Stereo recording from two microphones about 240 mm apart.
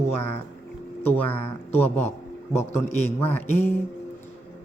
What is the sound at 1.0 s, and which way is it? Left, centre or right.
Speech, centre.